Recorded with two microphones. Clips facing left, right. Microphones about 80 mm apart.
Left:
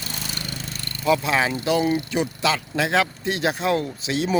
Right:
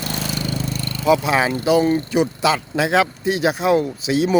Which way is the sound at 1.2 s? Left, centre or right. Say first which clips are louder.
Right 4 dB; centre.